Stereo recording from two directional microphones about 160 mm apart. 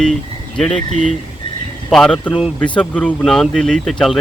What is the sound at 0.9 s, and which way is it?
Speech, 50° right (ahead or behind).